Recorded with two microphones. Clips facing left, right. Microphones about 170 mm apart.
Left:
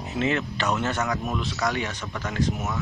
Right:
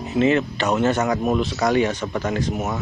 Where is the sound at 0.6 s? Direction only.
20° right (ahead or behind).